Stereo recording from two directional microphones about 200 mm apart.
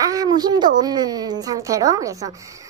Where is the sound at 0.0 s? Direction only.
20° right (ahead or behind).